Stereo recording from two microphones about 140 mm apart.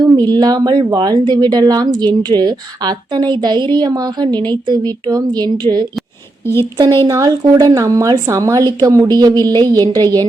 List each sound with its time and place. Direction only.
0.0 s speech: 30° right (ahead or behind)
6.4 s a woman's voice: 15° left (ahead or behind)
7.1 s a woman's voice: 25° right (ahead or behind)